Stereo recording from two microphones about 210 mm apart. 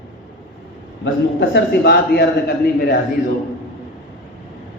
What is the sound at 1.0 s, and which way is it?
A man's voice, 60° left (ahead or behind).